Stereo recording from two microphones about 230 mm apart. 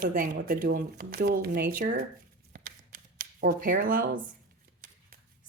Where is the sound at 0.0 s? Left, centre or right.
Right.